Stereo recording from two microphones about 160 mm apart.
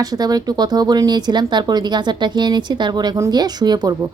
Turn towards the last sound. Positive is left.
turn(degrees=-25)  # may be behind; listen again after turning